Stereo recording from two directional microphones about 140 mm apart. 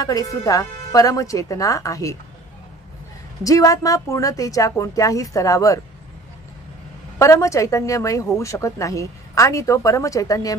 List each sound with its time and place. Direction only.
0.0 s speech: 25° left (ahead or behind)
3.4 s speech: 25° left (ahead or behind)
7.2 s speech: 20° left (ahead or behind)